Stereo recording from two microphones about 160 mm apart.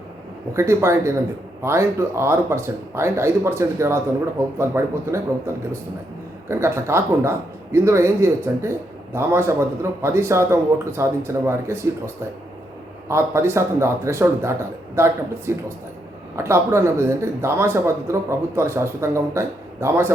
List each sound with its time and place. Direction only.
0.5 s speech: 15° right (ahead or behind)